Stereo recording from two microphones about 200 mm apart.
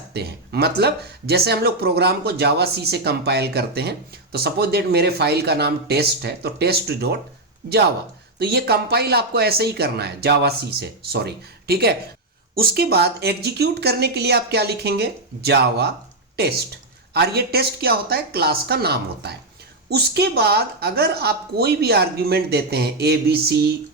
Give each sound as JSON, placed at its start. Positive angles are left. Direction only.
{"t": 0.1, "sound": "speech", "side_deg": -55}
{"t": 8.4, "sound": "speech", "side_deg": -50}